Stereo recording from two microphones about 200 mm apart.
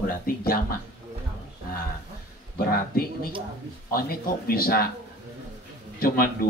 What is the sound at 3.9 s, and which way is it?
A man's voice, 50° left (ahead or behind).